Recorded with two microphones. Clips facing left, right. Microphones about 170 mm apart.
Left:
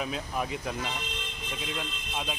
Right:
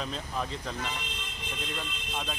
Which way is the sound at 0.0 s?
10° left (ahead or behind).